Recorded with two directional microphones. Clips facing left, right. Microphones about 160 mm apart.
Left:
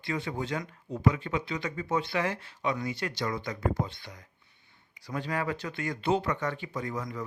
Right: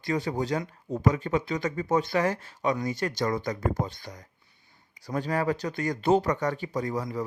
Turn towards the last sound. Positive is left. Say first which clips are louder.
# right 5 dB
turn(degrees=-35)  # may be behind; listen again after turning